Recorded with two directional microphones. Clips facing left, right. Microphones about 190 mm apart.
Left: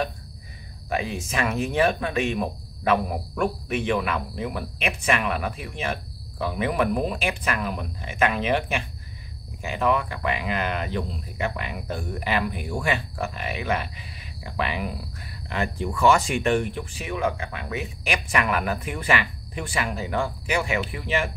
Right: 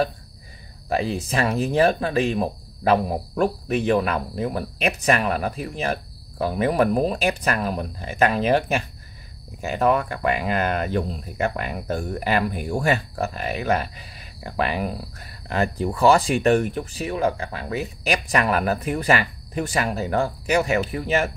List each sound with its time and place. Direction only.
0.8 s speech: 35° right (ahead or behind)